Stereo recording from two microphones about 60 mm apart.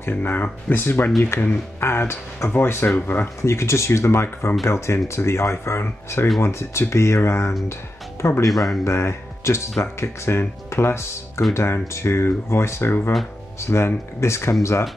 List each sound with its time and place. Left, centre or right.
0.0 s speech: left
3.4 s speech: left
8.5 s speech: centre
8.8 s speech: left